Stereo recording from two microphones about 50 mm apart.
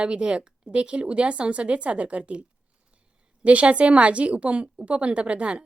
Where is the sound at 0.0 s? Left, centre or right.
Right.